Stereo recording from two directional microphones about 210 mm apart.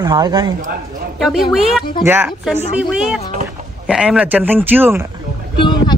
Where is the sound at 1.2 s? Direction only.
Centre (ahead or behind).